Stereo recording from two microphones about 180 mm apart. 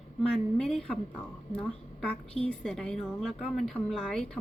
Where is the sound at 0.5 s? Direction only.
Centre (ahead or behind).